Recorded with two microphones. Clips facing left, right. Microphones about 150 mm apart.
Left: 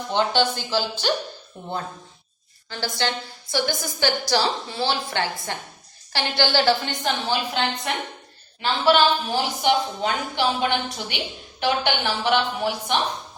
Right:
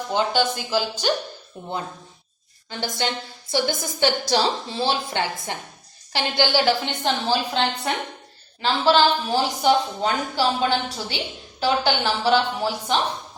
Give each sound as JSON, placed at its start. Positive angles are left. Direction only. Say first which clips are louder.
{"t": 0.1, "sound": "speech", "louder": "left 1 dB", "side_deg": -10}
{"t": 2.6, "sound": "a woman's voice", "louder": "even", "side_deg": -20}
{"t": 7.5, "sound": "a woman's voice", "louder": "right 2 dB", "side_deg": -30}